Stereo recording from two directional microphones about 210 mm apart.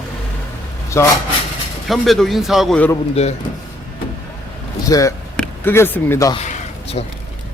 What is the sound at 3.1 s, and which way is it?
Speech, 30° left (ahead or behind).